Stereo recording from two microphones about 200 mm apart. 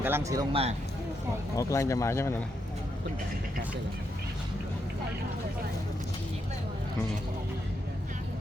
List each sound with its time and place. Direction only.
0.0 s speech: 15° right (ahead or behind)
0.5 s speech: 30° right (ahead or behind)
1.5 s speech: 15° left (ahead or behind)